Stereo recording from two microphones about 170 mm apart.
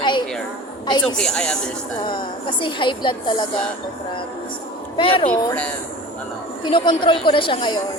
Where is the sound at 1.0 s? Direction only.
5° left (ahead or behind).